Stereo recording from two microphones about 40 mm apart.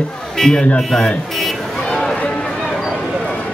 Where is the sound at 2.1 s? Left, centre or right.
Left.